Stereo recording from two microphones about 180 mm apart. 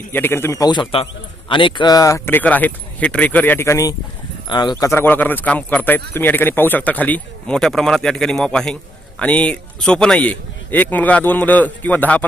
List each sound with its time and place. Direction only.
0.1 s speech: 10° left (ahead or behind)